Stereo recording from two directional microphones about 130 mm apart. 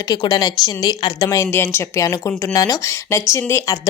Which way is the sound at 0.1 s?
30° left (ahead or behind).